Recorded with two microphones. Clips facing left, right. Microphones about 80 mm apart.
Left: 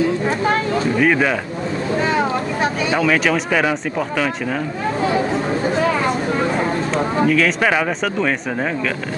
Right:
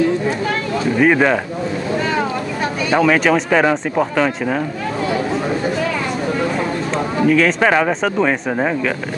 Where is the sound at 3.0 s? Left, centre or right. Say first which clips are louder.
Right 4 dB; centre.